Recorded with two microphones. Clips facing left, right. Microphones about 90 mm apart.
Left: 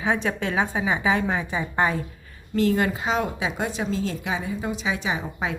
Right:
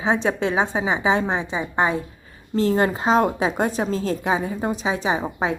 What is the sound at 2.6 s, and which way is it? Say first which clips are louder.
A woman's voice: right 2 dB; 30° right (ahead or behind).